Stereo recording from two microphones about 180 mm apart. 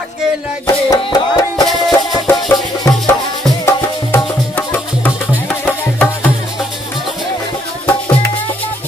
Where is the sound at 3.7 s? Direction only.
15° left (ahead or behind).